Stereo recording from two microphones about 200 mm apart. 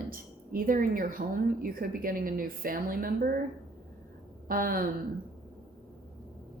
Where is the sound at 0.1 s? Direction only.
45° right (ahead or behind).